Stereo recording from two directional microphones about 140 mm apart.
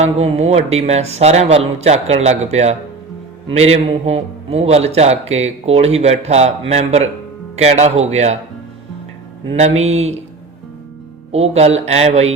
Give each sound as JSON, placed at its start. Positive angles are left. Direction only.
{"t": 0.0, "sound": "a man's voice", "side_deg": -50}
{"t": 9.5, "sound": "a man's voice", "side_deg": -50}
{"t": 11.3, "sound": "a man's voice", "side_deg": -50}